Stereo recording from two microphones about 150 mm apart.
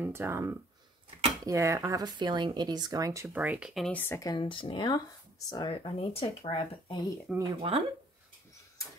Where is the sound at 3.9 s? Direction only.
15° left (ahead or behind); by 7.0 s 35° left (ahead or behind).